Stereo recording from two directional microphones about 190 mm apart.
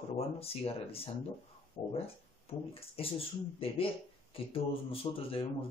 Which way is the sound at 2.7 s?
30° left (ahead or behind).